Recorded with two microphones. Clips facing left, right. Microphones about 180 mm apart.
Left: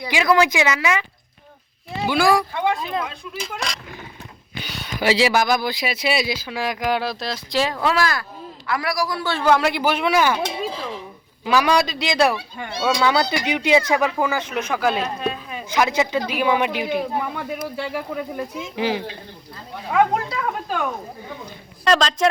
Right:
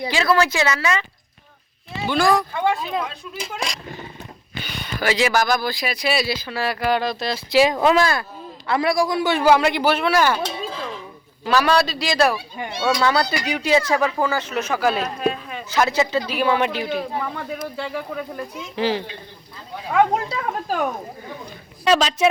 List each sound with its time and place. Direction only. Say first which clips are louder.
0.1 s speech: left 2 dB; 15° left (ahead or behind)
2.0 s speech: even; 5° left (ahead or behind)
3.4 s a man's voice: right 1 dB; 20° right (ahead or behind)
4.6 s a sound: right 1 dB; 5° left (ahead or behind)
4.9 s speech: left 1 dB; 25° left (ahead or behind); by 7.7 s 5° right (ahead or behind)
7.7 s a man's voice: right 4 dB; 20° right (ahead or behind)
9.5 s speech: right 1 dB; centre (ahead or behind); by 12.1 s 20° left (ahead or behind)
12.5 s speech: right 1 dB; 15° right (ahead or behind)
12.8 s speech: even; 10° left (ahead or behind)
14.7 s speech: right 1 dB; 5° right (ahead or behind)
15.0 s a sound: right 2 dB; centre (ahead or behind)
15.6 s speech: even; 15° left (ahead or behind)
20.3 s speech: right 1 dB; 40° right (ahead or behind)
21.8 s speech: right 1 dB; 5° right (ahead or behind)